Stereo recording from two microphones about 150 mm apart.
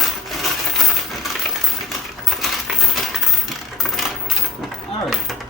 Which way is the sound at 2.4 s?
Centre (ahead or behind).